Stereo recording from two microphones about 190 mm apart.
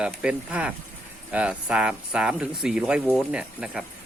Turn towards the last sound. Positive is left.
turn(degrees=-5)  # may be behind; listen again after turning